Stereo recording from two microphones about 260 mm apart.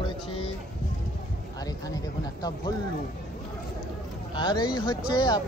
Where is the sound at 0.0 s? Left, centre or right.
Centre.